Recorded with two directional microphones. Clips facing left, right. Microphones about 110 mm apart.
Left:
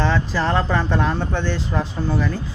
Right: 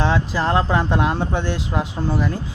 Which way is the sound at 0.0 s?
10° right (ahead or behind).